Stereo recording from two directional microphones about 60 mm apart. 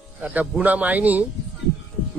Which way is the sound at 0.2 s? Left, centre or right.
Right.